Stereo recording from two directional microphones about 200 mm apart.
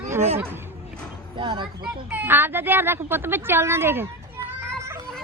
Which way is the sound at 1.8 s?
10° right (ahead or behind).